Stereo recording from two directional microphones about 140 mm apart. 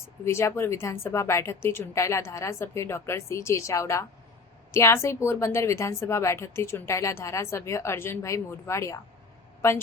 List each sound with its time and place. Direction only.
0.3 s a woman's voice: 20° left (ahead or behind)